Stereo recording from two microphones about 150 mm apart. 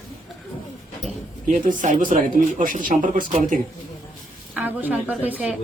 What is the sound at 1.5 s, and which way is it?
Speech, 60° right (ahead or behind).